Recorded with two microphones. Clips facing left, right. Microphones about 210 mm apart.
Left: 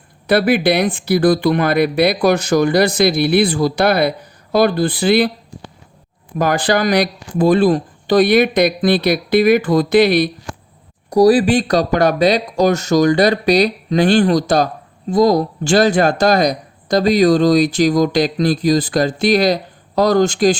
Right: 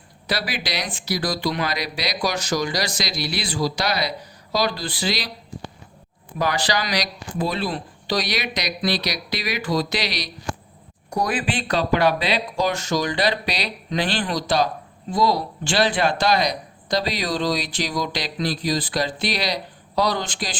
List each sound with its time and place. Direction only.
0.3 s speech: 55° left (ahead or behind)
6.4 s speech: 50° left (ahead or behind)
11.1 s speech: 35° left (ahead or behind)